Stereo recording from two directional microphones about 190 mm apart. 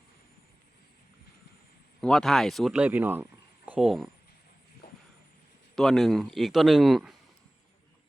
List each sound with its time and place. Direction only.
2.0 s speech: 5° left (ahead or behind)
4.8 s a sound: 55° left (ahead or behind)
5.7 s speech: centre (ahead or behind)